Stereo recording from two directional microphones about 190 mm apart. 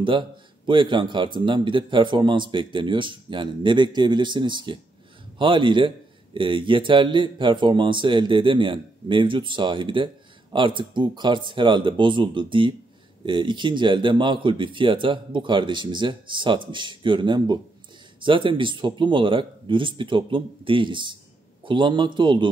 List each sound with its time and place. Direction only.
0.7 s a man's voice: 25° right (ahead or behind)